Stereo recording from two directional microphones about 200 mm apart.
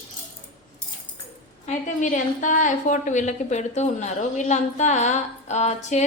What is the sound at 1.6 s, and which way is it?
A woman's voice, 40° left (ahead or behind).